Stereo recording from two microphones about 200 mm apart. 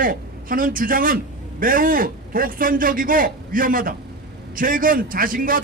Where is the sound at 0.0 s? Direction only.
45° right (ahead or behind).